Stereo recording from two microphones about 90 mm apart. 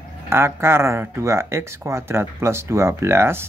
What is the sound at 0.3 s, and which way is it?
Speech, 30° right (ahead or behind).